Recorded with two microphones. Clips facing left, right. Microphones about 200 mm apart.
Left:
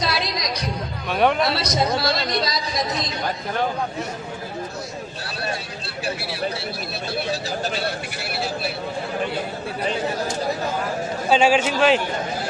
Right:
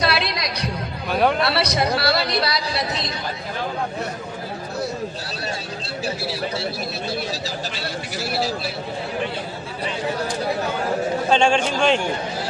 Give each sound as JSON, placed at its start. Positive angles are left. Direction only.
{"t": 0.0, "sound": "music", "side_deg": -65}
{"t": 1.1, "sound": "speech", "side_deg": 0}
{"t": 1.4, "sound": "speech", "side_deg": -65}
{"t": 6.1, "sound": "speech", "side_deg": 60}
{"t": 8.2, "sound": "speech", "side_deg": 60}
{"t": 11.3, "sound": "a man's voice", "side_deg": 5}